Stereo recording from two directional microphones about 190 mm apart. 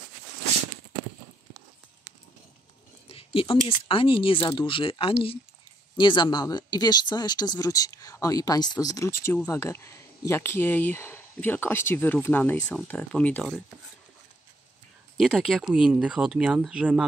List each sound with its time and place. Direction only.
3.1 s speech: 30° left (ahead or behind); by 13.6 s 5° left (ahead or behind)
15.1 s speech: centre (ahead or behind)